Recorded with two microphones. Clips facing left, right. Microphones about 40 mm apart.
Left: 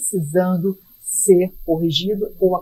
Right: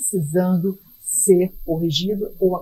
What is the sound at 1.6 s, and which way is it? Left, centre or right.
Speech, centre.